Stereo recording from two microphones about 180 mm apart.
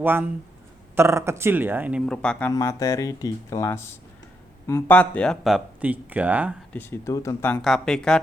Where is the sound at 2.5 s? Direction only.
20° left (ahead or behind); by 6.5 s 10° right (ahead or behind).